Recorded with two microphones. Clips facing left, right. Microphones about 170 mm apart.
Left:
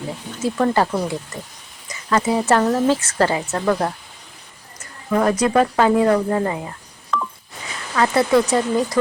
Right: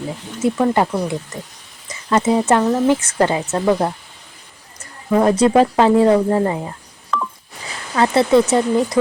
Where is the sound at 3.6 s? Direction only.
10° right (ahead or behind).